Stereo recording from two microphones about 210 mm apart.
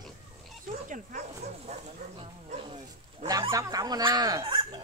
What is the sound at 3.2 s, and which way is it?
Fowl, 15° right (ahead or behind).